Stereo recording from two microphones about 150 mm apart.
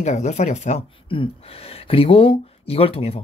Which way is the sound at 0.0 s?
50° left (ahead or behind).